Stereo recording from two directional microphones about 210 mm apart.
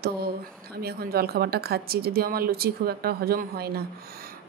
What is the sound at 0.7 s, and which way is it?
A woman's voice, 45° right (ahead or behind).